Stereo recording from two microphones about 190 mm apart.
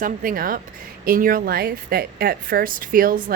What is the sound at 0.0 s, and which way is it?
Speech, 45° right (ahead or behind).